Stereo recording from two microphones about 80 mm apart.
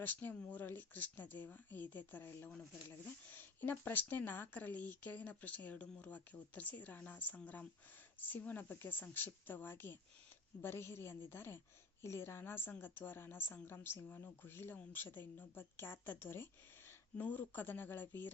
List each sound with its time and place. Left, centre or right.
0.0 s a woman's voice: left